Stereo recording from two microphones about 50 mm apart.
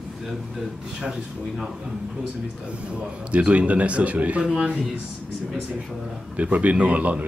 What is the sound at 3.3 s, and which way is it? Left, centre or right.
A man's voice, right.